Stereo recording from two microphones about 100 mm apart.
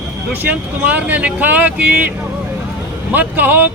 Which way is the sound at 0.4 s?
15° right (ahead or behind).